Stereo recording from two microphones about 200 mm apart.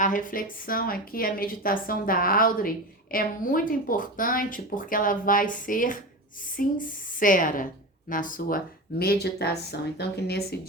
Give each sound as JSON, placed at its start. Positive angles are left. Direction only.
{"t": 0.0, "sound": "a woman's voice", "side_deg": 40}